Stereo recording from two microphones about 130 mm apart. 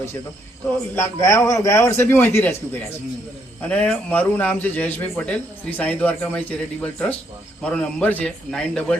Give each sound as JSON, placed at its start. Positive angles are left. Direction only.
{"t": 0.9, "sound": "a man's voice", "side_deg": 20}